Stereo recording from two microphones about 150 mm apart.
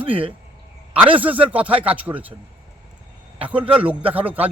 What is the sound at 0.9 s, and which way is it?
Speech, 10° right (ahead or behind).